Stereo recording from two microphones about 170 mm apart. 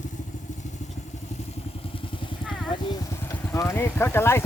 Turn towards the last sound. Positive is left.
turn(degrees=15)  # may be behind; listen again after turning